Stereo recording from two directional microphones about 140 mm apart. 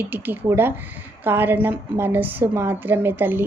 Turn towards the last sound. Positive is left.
turn(degrees=-15)  # may be behind; listen again after turning